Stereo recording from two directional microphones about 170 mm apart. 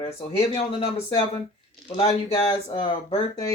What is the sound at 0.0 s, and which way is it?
Speech, 35° left (ahead or behind).